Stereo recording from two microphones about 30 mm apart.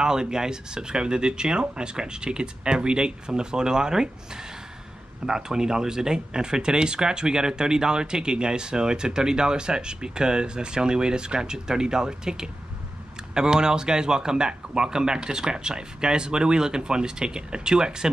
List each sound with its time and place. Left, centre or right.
0.0 s speech: right
5.2 s speech: centre